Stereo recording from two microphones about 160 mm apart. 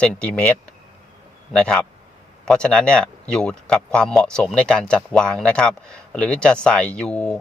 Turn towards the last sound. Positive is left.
turn(degrees=5)  # may be behind; listen again after turning